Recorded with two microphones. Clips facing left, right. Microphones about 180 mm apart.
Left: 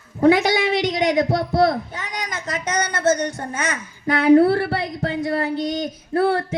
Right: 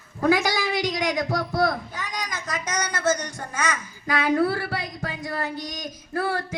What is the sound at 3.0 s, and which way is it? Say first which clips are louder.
Speech: left 6 dB; 60° left (ahead or behind).